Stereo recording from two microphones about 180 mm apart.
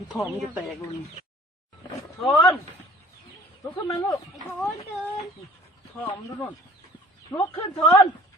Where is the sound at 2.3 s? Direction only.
15° left (ahead or behind).